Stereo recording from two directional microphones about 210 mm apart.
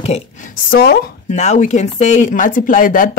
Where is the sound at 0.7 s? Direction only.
45° left (ahead or behind).